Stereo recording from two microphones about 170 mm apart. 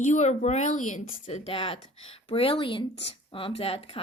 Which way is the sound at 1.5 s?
35° left (ahead or behind).